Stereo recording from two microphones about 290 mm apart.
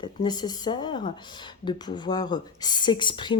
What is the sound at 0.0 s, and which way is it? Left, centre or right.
Speech, centre.